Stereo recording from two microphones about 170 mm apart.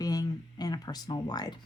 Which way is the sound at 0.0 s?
20° left (ahead or behind).